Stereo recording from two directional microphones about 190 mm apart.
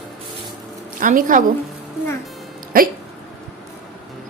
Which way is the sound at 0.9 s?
45° right (ahead or behind).